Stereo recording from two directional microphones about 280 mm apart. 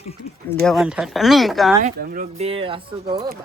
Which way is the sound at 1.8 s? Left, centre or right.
Right.